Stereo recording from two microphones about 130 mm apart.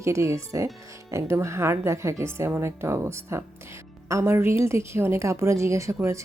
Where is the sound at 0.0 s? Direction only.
20° right (ahead or behind).